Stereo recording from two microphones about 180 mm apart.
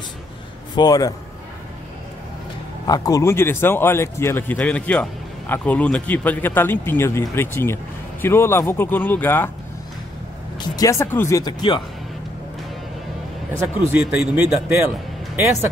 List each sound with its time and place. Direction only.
0.7 s a man's voice: 20° left (ahead or behind)
2.9 s a man's voice: 20° left (ahead or behind)
10.6 s a man's voice: 20° left (ahead or behind)
13.9 s speech: 5° right (ahead or behind)